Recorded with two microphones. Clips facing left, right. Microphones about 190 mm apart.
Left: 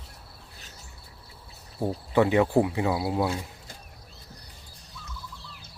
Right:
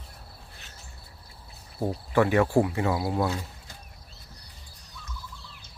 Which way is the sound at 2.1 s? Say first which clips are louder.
Left 1 dB; 20° left (ahead or behind).